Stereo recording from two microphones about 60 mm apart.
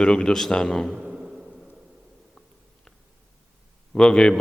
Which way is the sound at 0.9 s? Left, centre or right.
Centre.